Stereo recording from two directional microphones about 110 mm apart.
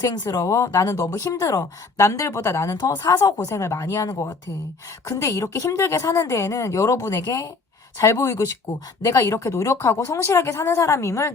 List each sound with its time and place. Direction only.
0.0 s speech: 35° left (ahead or behind)